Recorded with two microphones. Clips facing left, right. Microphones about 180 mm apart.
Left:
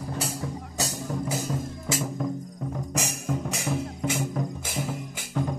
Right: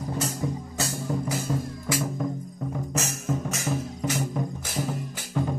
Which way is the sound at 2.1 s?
Centre (ahead or behind).